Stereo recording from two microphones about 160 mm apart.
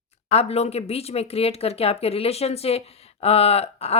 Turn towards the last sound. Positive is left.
turn(degrees=40)  # may be behind; listen again after turning